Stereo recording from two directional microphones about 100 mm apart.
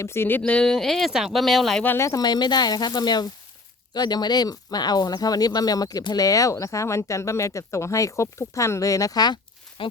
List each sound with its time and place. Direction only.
0.0 s speech: 25° left (ahead or behind); by 1.8 s centre (ahead or behind)
1.8 s speech: 20° left (ahead or behind)
2.0 s speech: 40° left (ahead or behind)
9.8 s speech: 60° left (ahead or behind)